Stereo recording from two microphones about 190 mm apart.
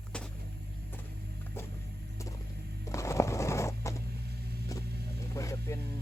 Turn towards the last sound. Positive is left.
turn(degrees=15)  # may be behind; listen again after turning